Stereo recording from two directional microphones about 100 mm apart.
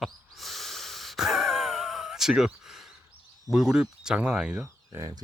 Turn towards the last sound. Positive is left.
turn(degrees=-40)  # may be behind; listen again after turning